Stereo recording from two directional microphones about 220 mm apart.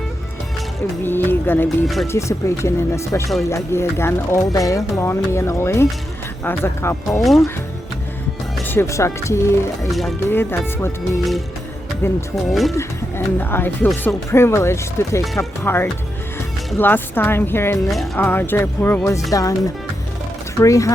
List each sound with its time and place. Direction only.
1.0 s speech: 10° left (ahead or behind)
8.5 s speech: 10° left (ahead or behind)
9.8 s speech: centre (ahead or behind)
11.2 s speech: centre (ahead or behind)
20.6 s speech: 15° left (ahead or behind)